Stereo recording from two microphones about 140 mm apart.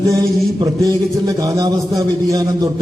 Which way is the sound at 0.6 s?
25° right (ahead or behind).